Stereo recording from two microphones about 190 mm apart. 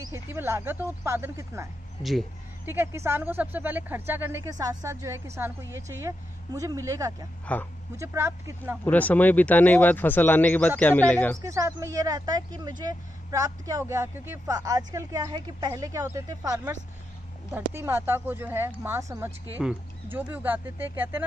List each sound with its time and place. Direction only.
0.0 s speech: 10° right (ahead or behind)
7.5 s speech: 5° left (ahead or behind)
8.0 s speech: 15° right (ahead or behind)
8.8 s speech: 10° left (ahead or behind)
11.4 s speech: 15° right (ahead or behind)